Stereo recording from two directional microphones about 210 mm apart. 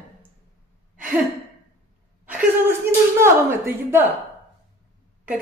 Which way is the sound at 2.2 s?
10° right (ahead or behind).